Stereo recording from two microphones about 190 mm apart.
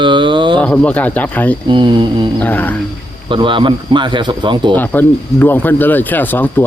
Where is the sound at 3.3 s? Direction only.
25° right (ahead or behind).